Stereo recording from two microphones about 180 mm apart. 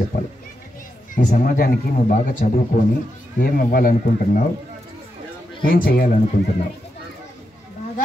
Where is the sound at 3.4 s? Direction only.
55° left (ahead or behind).